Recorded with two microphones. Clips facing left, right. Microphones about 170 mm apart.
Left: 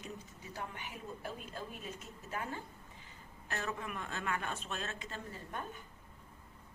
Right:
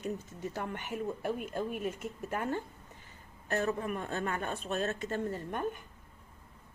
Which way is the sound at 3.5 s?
35° right (ahead or behind).